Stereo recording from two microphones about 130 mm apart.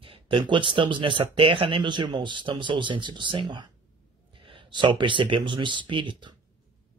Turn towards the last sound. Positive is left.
turn(degrees=-40)  # may be behind; listen again after turning